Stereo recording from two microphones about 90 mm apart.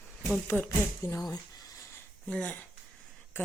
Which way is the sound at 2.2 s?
15° left (ahead or behind).